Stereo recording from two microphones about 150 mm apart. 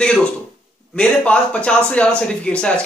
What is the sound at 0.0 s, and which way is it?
A man's voice, 5° left (ahead or behind).